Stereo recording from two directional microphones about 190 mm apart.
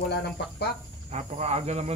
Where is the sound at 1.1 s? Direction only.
35° right (ahead or behind).